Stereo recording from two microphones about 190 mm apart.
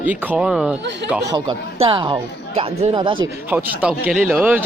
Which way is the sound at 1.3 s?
25° right (ahead or behind).